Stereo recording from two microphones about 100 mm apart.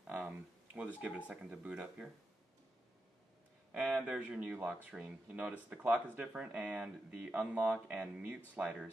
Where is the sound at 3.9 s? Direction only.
10° right (ahead or behind).